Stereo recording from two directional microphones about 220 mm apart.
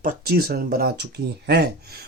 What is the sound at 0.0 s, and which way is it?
Speech, 40° right (ahead or behind).